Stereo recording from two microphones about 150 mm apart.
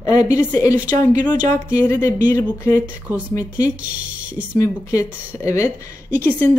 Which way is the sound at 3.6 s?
10° right (ahead or behind).